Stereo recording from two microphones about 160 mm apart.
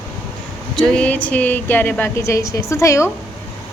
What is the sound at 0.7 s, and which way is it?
A woman's voice, 5° left (ahead or behind).